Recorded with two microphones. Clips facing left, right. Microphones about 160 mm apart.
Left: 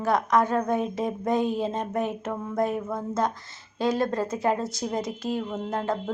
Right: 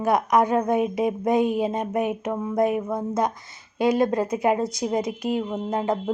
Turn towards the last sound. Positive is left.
turn(degrees=-20)  # may be behind; listen again after turning